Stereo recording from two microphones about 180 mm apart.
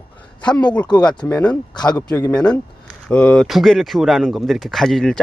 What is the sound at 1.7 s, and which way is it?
Speech, 25° left (ahead or behind).